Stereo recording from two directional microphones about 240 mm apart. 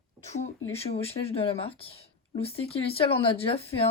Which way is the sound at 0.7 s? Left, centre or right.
Left.